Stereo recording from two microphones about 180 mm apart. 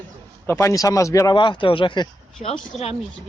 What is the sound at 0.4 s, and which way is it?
Speech, 15° left (ahead or behind).